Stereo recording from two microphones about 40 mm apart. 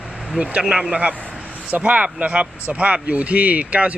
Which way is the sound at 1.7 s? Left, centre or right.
Right.